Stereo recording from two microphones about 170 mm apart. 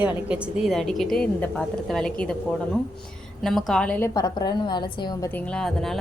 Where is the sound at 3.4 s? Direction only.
Centre (ahead or behind).